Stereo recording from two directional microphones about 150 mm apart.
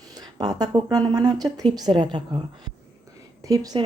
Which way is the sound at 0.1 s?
25° right (ahead or behind).